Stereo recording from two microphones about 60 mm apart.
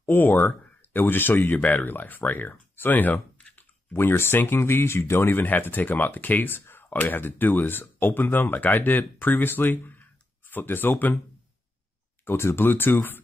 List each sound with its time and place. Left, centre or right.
0.0 s speech: left
3.9 s speech: left
12.3 s speech: left